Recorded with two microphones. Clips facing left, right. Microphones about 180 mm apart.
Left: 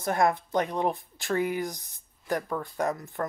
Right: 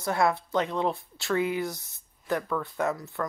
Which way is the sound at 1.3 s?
45° left (ahead or behind).